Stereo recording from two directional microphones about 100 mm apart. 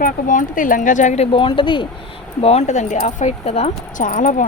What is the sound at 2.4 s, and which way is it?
Speech, 90° left.